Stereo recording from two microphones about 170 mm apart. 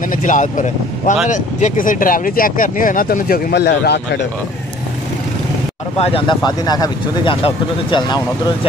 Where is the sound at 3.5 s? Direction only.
85° left.